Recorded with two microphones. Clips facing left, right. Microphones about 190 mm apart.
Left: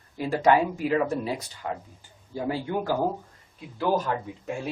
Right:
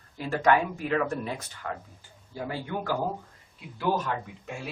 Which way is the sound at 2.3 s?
15° left (ahead or behind).